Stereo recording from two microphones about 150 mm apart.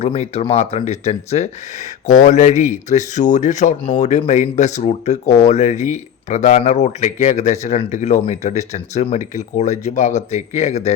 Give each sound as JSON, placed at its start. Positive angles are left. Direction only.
{"t": 0.0, "sound": "speech", "side_deg": 45}